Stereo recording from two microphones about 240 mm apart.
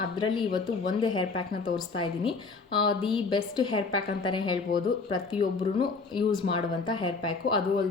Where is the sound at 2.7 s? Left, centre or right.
Centre.